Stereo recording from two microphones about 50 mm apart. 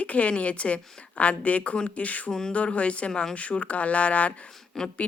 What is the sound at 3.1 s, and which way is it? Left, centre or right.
Speech, centre.